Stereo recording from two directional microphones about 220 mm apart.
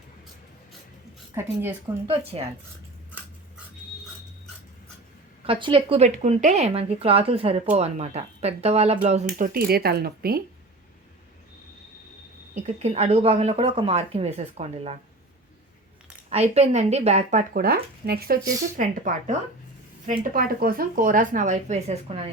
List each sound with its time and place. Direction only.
1.3 s a woman's voice: 10° right (ahead or behind)
2.0 s speech: 25° right (ahead or behind)
5.5 s speech: 20° right (ahead or behind); by 10.4 s 45° right (ahead or behind)
12.6 s speech: 30° right (ahead or behind)
16.3 s speech: 30° right (ahead or behind)